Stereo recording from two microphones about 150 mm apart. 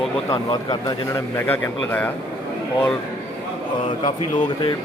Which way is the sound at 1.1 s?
10° left (ahead or behind).